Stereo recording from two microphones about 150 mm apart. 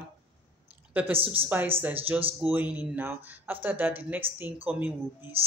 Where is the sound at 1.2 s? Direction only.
40° right (ahead or behind).